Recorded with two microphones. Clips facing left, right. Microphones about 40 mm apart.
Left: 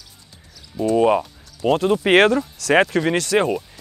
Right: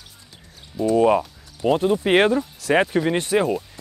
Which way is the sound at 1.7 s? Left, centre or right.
Left.